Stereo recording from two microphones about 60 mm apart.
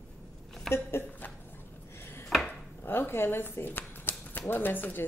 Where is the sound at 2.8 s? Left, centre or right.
Left.